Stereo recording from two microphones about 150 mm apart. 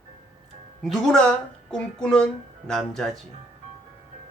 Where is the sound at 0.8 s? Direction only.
Centre (ahead or behind).